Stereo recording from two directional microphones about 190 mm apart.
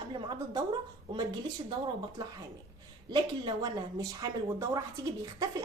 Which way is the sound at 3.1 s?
20° right (ahead or behind).